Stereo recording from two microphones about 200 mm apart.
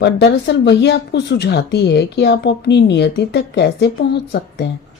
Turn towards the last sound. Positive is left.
turn(degrees=55)  # may be behind; listen again after turning